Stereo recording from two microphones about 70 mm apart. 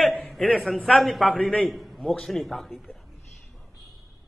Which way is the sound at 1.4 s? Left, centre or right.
Centre.